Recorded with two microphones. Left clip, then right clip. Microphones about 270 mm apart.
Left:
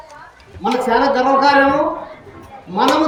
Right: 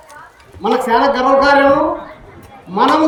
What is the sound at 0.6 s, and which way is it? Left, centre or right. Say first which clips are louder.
Speech: right 2 dB; centre.